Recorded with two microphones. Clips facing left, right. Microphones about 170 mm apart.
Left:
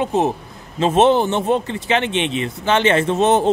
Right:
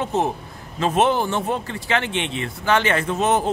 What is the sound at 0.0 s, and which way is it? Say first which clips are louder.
Speech: left 4 dB; 15° left (ahead or behind).